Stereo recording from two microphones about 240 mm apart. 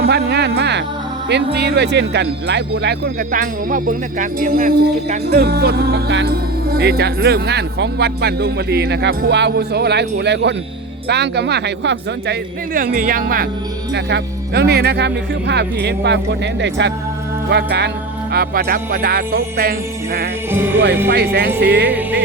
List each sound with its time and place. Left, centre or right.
0.0 s speech: right
3.3 s speech: right
20.5 s music: centre
21.3 s speech: right
21.8 s music: centre